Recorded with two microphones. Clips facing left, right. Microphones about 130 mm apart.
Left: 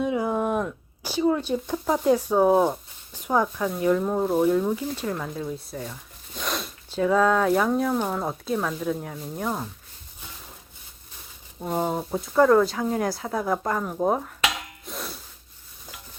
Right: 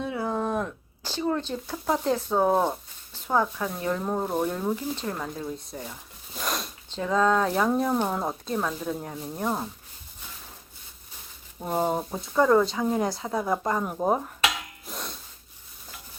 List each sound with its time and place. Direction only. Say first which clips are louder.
0.0 s a sound: left 4 dB; 15° left (ahead or behind)
2.0 s speech: left 5 dB; 10° left (ahead or behind)
5.8 s zipper: left 3 dB; 5° right (ahead or behind)
7.9 s speech: even; 10° right (ahead or behind)
11.6 s speech: even; 5° right (ahead or behind)
14.8 s a sound: left 2 dB; centre (ahead or behind)